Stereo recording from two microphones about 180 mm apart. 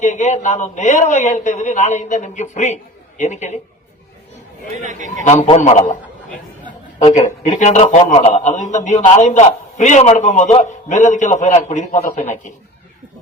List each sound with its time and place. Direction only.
0.0 s a man's voice: 40° left (ahead or behind)
4.8 s a man's voice: 45° right (ahead or behind)
5.3 s a man's voice: 35° left (ahead or behind)
7.0 s a man's voice: 40° left (ahead or behind)